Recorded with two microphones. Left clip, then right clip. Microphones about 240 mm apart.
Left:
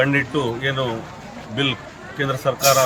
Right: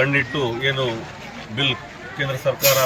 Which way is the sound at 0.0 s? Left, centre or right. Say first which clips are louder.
Even; centre.